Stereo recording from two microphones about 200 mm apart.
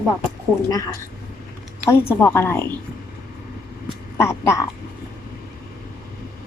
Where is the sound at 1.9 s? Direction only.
10° left (ahead or behind).